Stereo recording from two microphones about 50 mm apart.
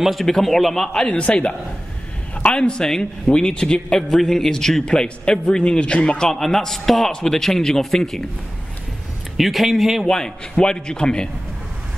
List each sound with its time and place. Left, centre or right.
0.0 s a man's voice: centre
1.0 s a man's voice: left; by 8.2 s centre
9.4 s a man's voice: centre
10.0 s a man's voice: centre